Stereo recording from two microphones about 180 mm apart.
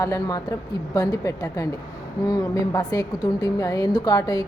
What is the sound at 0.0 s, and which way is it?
A woman's voice, 20° left (ahead or behind).